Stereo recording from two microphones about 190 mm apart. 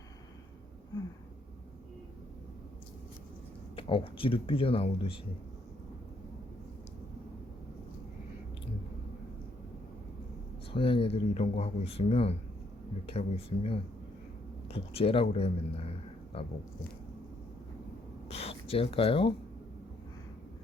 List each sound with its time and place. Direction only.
3.8 s speech: 30° left (ahead or behind)
10.7 s speech: 30° left (ahead or behind)
18.3 s a sound: 30° left (ahead or behind)